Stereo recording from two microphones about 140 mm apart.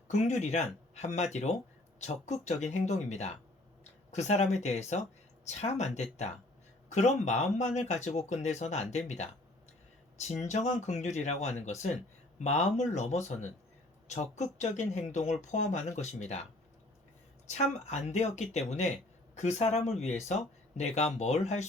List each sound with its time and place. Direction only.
0.1 s speech: 55° left (ahead or behind)